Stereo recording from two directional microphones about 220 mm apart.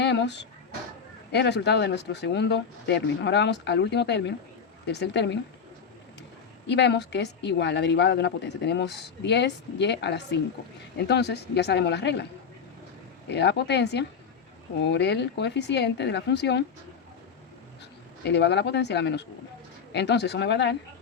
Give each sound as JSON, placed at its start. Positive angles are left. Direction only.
{"t": 0.0, "sound": "speech", "side_deg": 50}
{"t": 6.7, "sound": "speech", "side_deg": 50}
{"t": 13.2, "sound": "speech", "side_deg": 50}
{"t": 18.3, "sound": "speech", "side_deg": 50}